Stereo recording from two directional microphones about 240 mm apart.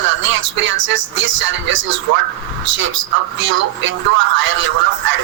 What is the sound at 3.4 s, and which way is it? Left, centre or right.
Speech, right.